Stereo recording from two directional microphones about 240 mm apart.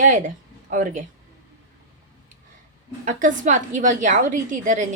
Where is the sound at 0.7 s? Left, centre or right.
Right.